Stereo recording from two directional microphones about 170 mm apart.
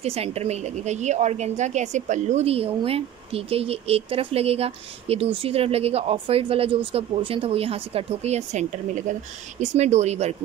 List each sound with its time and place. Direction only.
0.0 s speech: 35° right (ahead or behind)